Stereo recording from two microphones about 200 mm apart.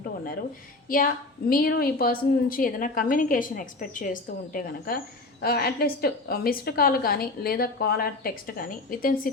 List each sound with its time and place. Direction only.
0.9 s a woman's voice: 45° left (ahead or behind)